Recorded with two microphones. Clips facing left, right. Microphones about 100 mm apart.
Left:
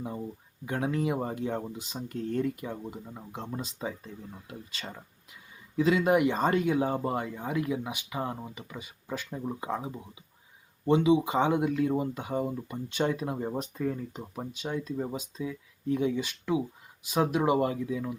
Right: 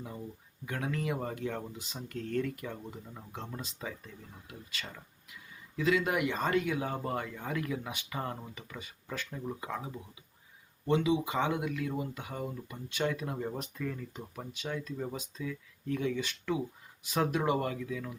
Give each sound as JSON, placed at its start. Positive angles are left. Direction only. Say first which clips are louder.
{"t": 0.0, "sound": "speech", "louder": "left 6 dB", "side_deg": 25}